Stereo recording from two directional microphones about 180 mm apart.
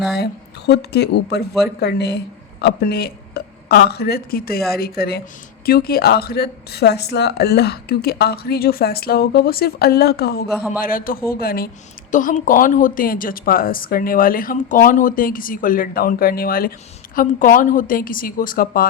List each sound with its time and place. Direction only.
0.1 s speech: 65° left (ahead or behind)
12.1 s speech: 45° left (ahead or behind)